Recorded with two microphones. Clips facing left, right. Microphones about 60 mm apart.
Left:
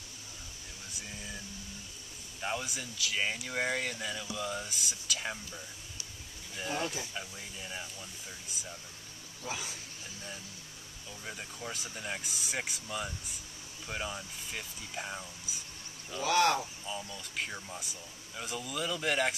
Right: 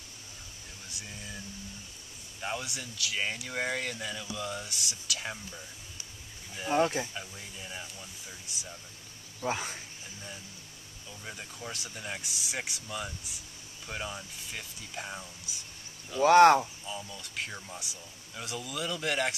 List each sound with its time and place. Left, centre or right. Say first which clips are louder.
0.9 s speech: even; centre
2.4 s speech: even; centre
7.2 s speech: even; centre
9.4 s speech: right 7 dB; right
11.1 s speech: even; centre
16.2 s speech: right 9 dB; right
16.8 s speech: even; centre